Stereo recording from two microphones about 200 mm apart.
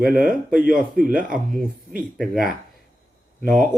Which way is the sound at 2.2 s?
Centre (ahead or behind).